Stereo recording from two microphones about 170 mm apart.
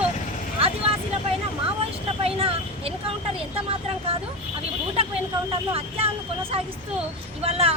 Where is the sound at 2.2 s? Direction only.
35° right (ahead or behind).